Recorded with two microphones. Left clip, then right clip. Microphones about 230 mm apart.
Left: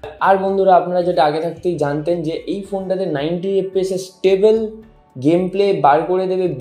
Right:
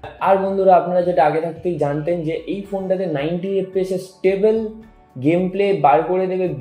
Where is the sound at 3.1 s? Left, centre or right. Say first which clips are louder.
Left 2 dB; left.